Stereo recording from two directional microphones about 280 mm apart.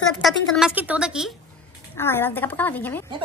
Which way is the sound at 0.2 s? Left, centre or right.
Centre.